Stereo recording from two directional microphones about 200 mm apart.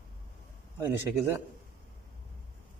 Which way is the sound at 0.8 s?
10° right (ahead or behind).